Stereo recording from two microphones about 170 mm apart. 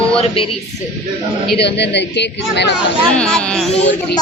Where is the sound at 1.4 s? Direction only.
75° left (ahead or behind).